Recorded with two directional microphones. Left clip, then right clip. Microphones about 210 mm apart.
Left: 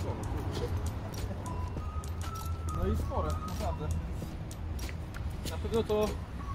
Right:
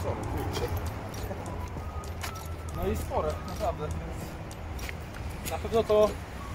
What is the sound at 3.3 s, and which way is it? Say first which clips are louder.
Speech: right 5 dB; centre (ahead or behind).